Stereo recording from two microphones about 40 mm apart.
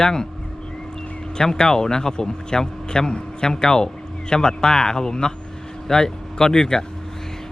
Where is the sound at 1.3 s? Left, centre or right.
Centre.